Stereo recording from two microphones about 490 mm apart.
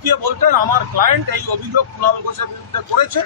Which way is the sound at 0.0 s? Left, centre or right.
Right.